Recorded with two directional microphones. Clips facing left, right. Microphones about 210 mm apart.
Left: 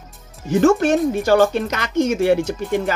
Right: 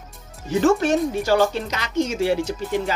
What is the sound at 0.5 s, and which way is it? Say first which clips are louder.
A woman's voice: left 3 dB; 50° left (ahead or behind).